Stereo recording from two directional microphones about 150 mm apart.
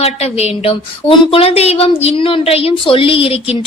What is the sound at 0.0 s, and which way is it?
Speech, 45° left (ahead or behind).